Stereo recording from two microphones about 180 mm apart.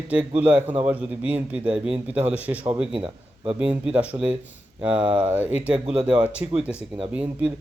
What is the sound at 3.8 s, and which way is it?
Speech, 5° right (ahead or behind).